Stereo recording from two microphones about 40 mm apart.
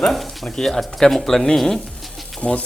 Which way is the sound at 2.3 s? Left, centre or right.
Left.